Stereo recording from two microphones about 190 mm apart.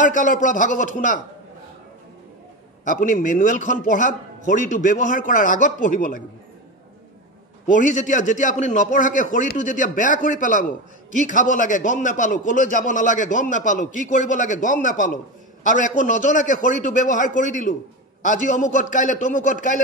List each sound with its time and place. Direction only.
0.0 s a man's voice: 40° left (ahead or behind)
2.9 s a man's voice: 45° left (ahead or behind)
7.6 s a man's voice: 40° left (ahead or behind)